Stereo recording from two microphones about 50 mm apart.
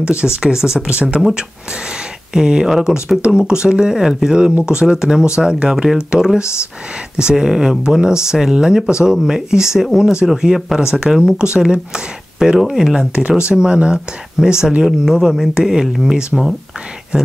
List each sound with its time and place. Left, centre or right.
0.0 s speech: centre
2.3 s speech: centre
6.4 s speech: left
7.2 s speech: centre
13.5 s speech: centre
17.1 s speech: centre